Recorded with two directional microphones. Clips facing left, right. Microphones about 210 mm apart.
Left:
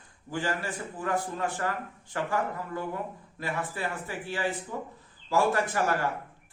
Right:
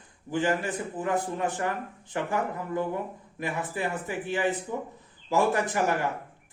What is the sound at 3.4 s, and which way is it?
A man's voice, 20° right (ahead or behind).